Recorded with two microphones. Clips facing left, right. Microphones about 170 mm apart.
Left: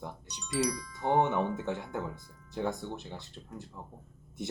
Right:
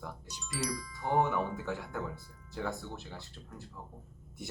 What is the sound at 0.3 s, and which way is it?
Speech, centre (ahead or behind).